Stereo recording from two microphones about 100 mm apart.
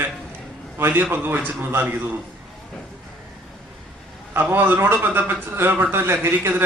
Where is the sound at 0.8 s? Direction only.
25° right (ahead or behind).